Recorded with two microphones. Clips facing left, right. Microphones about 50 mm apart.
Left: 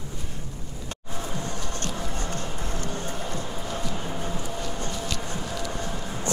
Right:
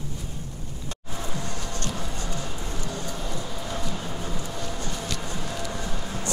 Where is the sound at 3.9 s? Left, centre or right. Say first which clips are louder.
Left 1 dB; left.